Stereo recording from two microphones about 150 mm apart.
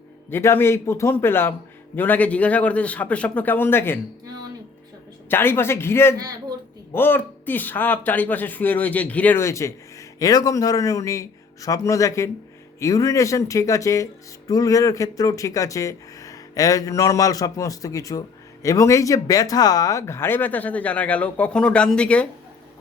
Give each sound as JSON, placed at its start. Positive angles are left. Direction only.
{"t": 0.3, "sound": "speech", "side_deg": 15}
{"t": 5.3, "sound": "speech", "side_deg": 15}